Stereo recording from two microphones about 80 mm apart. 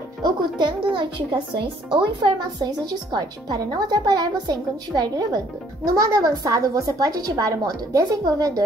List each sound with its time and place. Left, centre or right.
0.2 s a woman's voice: right